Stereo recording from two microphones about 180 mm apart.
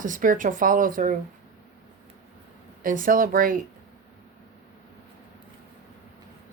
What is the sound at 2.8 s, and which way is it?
Speech, 50° right (ahead or behind).